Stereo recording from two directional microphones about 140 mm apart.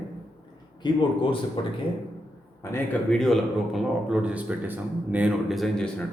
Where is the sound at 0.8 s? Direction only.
35° left (ahead or behind).